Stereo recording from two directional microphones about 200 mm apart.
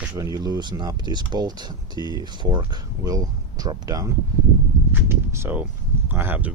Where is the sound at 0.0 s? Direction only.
5° right (ahead or behind).